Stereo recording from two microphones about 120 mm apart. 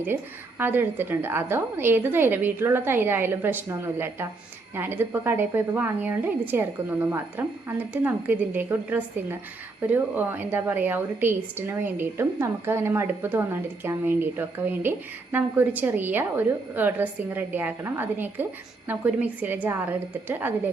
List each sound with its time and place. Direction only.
0.6 s a woman's voice: 15° right (ahead or behind)